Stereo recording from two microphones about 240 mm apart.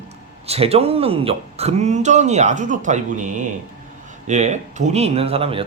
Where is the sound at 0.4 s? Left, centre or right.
Right.